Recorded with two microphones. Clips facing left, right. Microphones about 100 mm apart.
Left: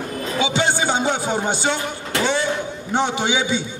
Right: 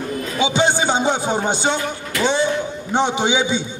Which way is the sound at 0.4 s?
20° right (ahead or behind).